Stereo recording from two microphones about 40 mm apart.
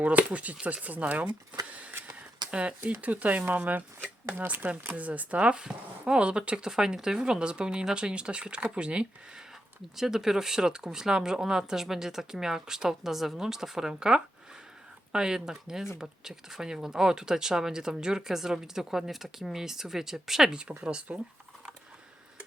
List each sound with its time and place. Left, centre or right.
0.0 s speech: right
1.7 s a sound: right
2.5 s speech: right
3.0 s speech: right
9.9 s speech: centre
20.5 s speech: right